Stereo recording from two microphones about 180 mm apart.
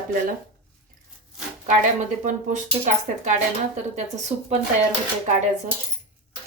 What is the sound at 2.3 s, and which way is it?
Speech, 45° right (ahead or behind).